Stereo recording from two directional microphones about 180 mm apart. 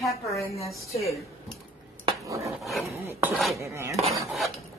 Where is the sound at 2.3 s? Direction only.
15° right (ahead or behind).